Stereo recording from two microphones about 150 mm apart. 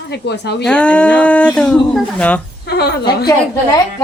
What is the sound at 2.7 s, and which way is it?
Speech, 90° left.